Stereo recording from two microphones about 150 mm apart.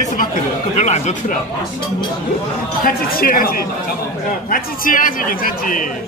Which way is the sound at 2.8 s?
75° left (ahead or behind).